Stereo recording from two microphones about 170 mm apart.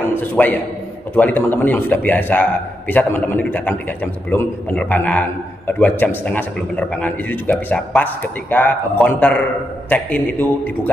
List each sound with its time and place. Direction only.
0.0 s a man's voice: 10° left (ahead or behind)